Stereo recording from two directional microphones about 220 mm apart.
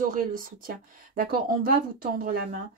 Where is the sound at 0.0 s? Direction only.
40° right (ahead or behind).